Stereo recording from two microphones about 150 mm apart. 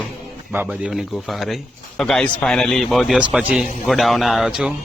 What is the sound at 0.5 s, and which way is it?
A man's voice, 10° right (ahead or behind).